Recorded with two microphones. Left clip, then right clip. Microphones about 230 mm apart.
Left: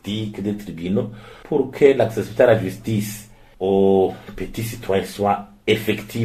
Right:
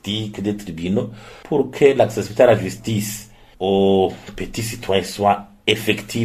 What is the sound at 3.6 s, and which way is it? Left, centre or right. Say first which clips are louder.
Speech: even; right.